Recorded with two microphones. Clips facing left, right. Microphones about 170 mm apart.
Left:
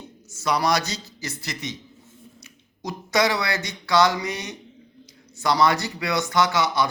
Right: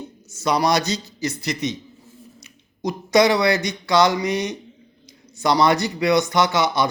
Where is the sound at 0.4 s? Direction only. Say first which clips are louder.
Right 3 dB; 20° right (ahead or behind).